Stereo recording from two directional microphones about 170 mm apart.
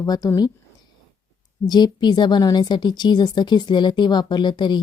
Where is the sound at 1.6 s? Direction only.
25° left (ahead or behind).